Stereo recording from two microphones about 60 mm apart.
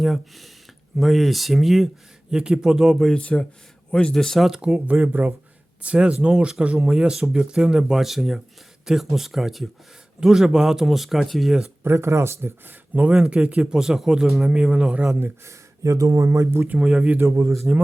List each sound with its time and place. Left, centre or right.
0.0 s speech: centre
3.2 s speech: centre
4.4 s speech: centre
5.0 s speech: right
6.3 s speech: centre
11.8 s speech: right
12.9 s speech: right
15.4 s speech: right
16.7 s speech: centre
17.2 s speech: right